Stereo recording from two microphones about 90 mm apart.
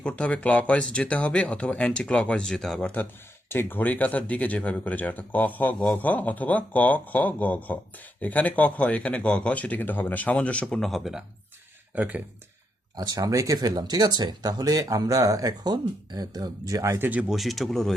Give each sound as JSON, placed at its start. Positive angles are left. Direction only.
{"t": 0.0, "sound": "speech", "side_deg": 10}
{"t": 3.5, "sound": "speech", "side_deg": 25}
{"t": 11.9, "sound": "speech", "side_deg": -15}
{"t": 13.0, "sound": "speech", "side_deg": -45}
{"t": 17.0, "sound": "speech", "side_deg": -15}
{"t": 17.2, "sound": "speech", "side_deg": 0}